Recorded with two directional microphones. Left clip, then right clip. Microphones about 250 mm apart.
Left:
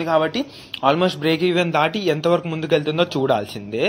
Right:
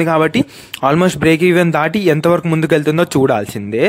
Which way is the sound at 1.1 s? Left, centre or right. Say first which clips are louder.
Right 7 dB; right.